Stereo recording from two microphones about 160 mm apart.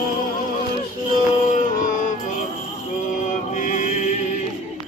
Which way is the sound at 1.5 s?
55° left (ahead or behind).